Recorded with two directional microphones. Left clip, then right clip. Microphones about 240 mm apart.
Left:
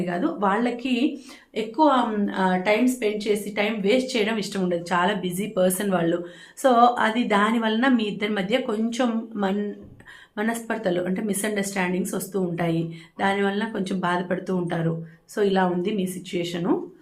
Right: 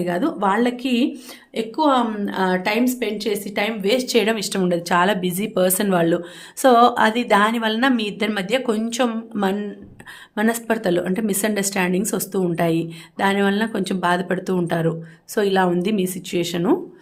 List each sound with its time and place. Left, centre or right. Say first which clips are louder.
0.0 s a woman's voice: right 4 dB; right